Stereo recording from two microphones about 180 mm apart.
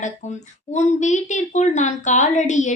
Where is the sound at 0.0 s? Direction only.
40° left (ahead or behind).